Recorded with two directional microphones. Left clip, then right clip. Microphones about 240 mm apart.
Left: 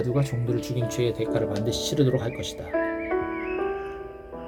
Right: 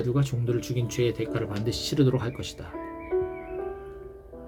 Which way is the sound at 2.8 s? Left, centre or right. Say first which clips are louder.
Left 10 dB; left.